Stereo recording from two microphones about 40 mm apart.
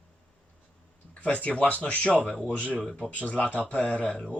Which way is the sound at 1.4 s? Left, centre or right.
Left.